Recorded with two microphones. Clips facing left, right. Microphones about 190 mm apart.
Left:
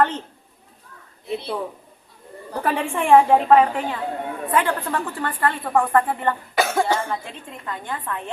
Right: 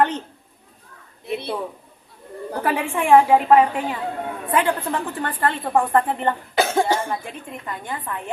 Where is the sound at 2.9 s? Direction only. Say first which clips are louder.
Even; 10° right (ahead or behind).